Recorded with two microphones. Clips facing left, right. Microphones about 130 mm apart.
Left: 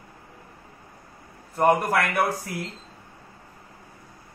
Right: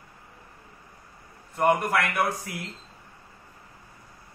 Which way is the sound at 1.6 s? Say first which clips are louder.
Left 2 dB; 35° left (ahead or behind).